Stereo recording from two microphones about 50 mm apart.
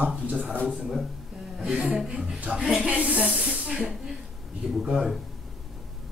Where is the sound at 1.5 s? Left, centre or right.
Centre.